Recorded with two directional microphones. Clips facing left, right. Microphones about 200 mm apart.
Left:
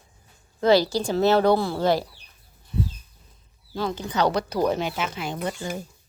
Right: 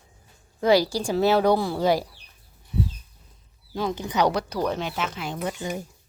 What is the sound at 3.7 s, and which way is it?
Speech, 15° right (ahead or behind).